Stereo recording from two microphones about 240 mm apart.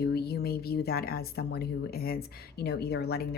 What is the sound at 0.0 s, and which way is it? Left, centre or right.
Speech, left.